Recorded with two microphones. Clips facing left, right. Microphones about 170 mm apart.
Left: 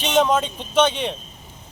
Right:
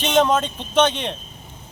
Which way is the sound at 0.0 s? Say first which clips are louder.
Right 1 dB; 10° left (ahead or behind).